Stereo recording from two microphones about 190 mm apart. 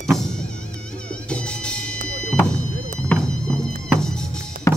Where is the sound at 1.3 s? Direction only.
5° left (ahead or behind).